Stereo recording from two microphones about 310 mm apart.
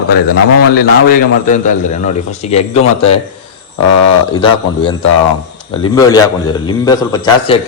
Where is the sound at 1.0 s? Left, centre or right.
Left.